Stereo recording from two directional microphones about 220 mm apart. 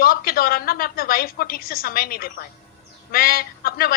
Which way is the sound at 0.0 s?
40° left (ahead or behind).